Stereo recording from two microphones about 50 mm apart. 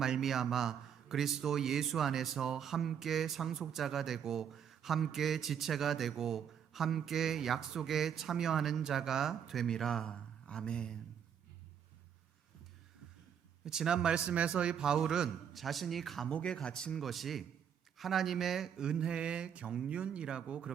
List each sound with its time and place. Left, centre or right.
0.0 s a man's voice: centre
9.6 s speech: centre
10.1 s a sound: centre
10.7 s speech: centre
13.7 s speech: centre
15.5 s a man's voice: centre
16.3 s speech: centre
17.0 s a man's voice: centre
18.8 s speech: centre